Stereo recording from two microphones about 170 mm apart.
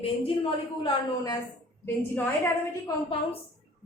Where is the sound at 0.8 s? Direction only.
20° left (ahead or behind).